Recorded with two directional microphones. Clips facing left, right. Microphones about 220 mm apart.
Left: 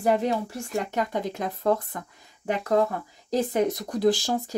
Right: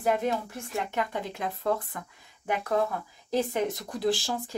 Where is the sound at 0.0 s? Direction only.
35° left (ahead or behind).